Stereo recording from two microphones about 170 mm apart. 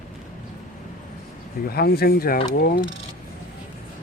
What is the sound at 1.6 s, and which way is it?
Speech, 65° left (ahead or behind).